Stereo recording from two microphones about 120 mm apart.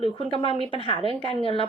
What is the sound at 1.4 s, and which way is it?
Speech, 50° left (ahead or behind).